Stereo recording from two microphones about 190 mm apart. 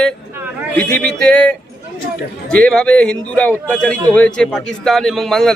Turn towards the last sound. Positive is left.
turn(degrees=0)  # may be behind; listen again after turning